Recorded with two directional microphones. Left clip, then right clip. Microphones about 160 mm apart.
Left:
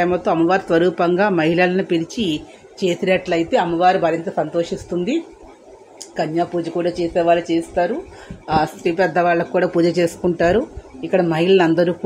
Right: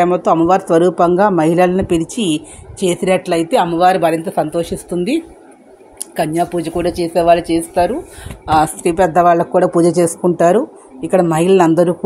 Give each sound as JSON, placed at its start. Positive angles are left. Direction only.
{"t": 0.0, "sound": "speech", "side_deg": -40}